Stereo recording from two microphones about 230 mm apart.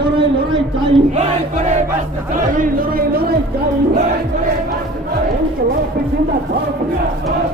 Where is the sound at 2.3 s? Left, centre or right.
Right.